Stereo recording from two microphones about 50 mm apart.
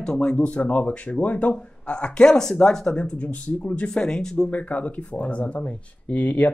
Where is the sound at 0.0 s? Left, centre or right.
Centre.